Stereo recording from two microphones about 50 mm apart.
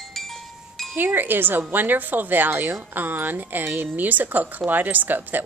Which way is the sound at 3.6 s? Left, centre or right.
Right.